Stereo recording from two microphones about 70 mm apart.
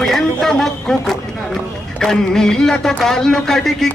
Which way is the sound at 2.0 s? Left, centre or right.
Centre.